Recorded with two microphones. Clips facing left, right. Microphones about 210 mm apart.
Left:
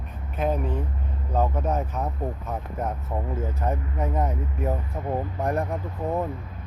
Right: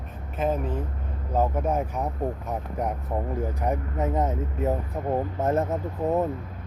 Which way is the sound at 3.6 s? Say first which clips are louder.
Right 1 dB; 20° right (ahead or behind).